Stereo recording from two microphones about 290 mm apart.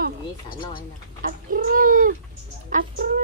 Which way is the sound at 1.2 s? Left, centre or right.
Right.